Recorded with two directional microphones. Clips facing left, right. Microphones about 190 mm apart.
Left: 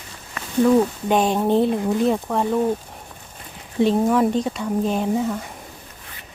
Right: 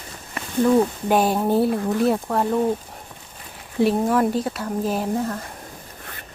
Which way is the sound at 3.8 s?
5° right (ahead or behind).